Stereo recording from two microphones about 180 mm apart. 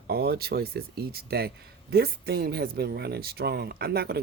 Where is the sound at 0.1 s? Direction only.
60° right (ahead or behind).